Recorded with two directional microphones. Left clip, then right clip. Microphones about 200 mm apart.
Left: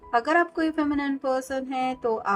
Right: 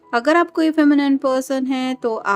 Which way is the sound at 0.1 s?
45° right (ahead or behind).